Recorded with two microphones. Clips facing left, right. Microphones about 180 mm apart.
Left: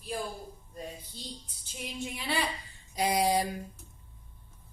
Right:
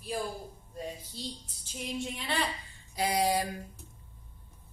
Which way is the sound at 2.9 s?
20° left (ahead or behind).